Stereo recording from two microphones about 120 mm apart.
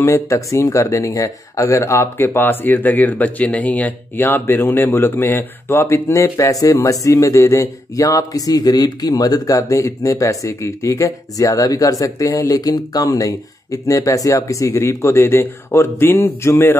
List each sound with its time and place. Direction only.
0.0 s speech: 25° left (ahead or behind)